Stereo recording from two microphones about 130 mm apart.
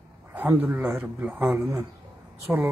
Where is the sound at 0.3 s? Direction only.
15° right (ahead or behind).